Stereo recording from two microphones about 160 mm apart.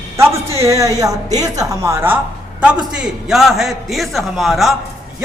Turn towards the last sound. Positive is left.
turn(degrees=0)  # may be behind; listen again after turning